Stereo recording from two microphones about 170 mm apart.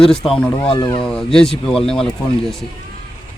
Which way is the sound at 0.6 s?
30° left (ahead or behind).